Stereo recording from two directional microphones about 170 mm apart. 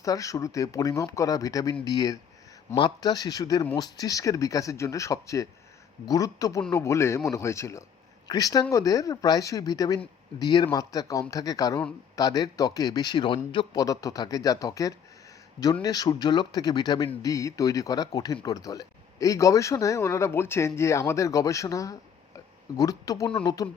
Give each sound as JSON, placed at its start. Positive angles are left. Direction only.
{"t": 0.0, "sound": "speech", "side_deg": 20}